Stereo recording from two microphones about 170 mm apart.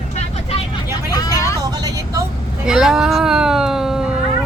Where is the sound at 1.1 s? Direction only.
20° left (ahead or behind).